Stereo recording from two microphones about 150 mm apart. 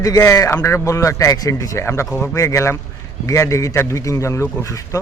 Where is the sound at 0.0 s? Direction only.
20° left (ahead or behind).